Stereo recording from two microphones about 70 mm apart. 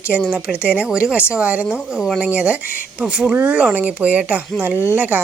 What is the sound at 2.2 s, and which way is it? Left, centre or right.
A woman's voice, centre.